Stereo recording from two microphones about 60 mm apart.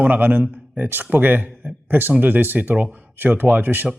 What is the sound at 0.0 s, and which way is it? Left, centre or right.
Speech, right.